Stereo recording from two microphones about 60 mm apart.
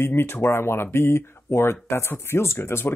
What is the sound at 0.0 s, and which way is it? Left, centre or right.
Speech, left.